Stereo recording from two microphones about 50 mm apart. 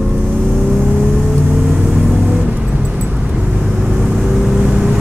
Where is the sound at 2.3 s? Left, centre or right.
Right.